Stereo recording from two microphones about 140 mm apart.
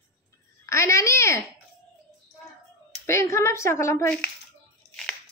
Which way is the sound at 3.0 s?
20° left (ahead or behind).